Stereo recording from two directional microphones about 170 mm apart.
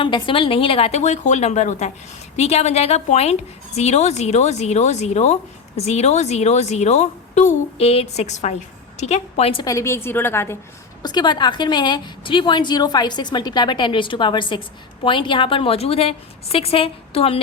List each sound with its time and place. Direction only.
0.0 s speech: 30° left (ahead or behind)
9.6 s a woman's voice: 15° left (ahead or behind)
11.0 s a woman's voice: 25° left (ahead or behind)